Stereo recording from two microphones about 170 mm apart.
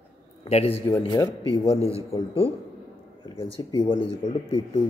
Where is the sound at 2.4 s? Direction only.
15° right (ahead or behind).